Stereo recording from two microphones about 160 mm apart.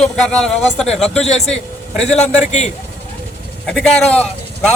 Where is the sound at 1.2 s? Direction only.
40° left (ahead or behind).